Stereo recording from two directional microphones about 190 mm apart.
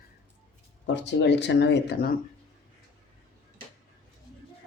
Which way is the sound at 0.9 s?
70° left (ahead or behind).